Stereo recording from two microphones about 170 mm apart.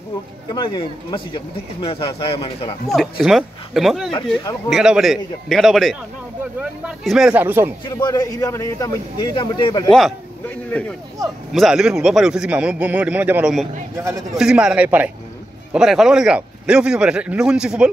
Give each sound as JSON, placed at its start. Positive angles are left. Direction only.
{"t": 0.5, "sound": "speech", "side_deg": 25}
{"t": 2.9, "sound": "a man's voice", "side_deg": 0}
{"t": 7.9, "sound": "a man's voice", "side_deg": 20}
{"t": 9.8, "sound": "a man's voice", "side_deg": 5}
{"t": 13.9, "sound": "speech", "side_deg": -15}
{"t": 14.3, "sound": "a man's voice", "side_deg": -5}